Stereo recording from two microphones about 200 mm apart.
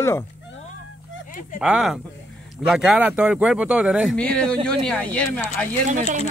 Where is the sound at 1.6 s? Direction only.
5° right (ahead or behind).